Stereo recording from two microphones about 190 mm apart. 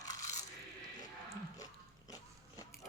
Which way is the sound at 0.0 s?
20° left (ahead or behind).